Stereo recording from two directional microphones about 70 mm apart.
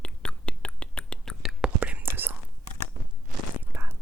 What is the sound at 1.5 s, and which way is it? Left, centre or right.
Whispering, centre.